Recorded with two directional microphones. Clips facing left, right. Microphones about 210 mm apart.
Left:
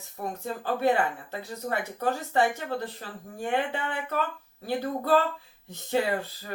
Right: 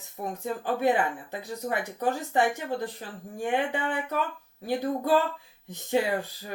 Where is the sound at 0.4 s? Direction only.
15° right (ahead or behind).